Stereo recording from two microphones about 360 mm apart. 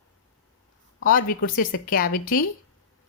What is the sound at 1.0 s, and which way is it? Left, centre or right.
Speech, left.